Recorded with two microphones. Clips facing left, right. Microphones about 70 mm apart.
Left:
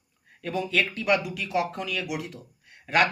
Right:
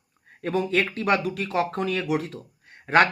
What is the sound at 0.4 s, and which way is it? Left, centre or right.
Speech, right.